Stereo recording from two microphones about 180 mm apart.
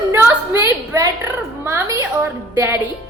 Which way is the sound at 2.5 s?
15° right (ahead or behind).